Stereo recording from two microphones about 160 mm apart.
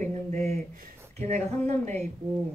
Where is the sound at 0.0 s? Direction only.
45° right (ahead or behind).